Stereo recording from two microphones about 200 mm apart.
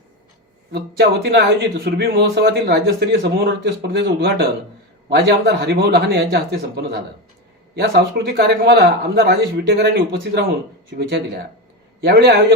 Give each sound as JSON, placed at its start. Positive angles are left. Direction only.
{"t": 0.7, "sound": "a man's voice", "side_deg": -55}
{"t": 12.0, "sound": "speech", "side_deg": -55}